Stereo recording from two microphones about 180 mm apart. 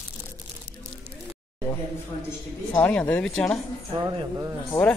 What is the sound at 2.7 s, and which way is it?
Speech, 5° left (ahead or behind).